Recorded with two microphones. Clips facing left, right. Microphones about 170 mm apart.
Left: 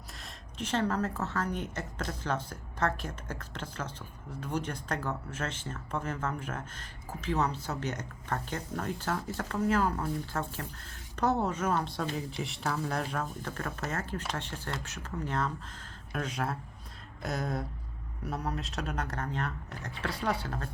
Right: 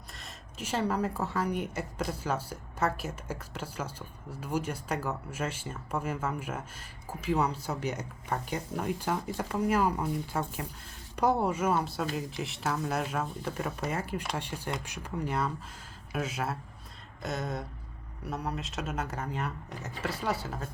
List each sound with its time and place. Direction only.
0.1 s a woman's voice: centre (ahead or behind)